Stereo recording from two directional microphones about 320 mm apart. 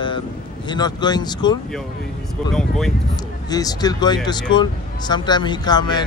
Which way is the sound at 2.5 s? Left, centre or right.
Centre.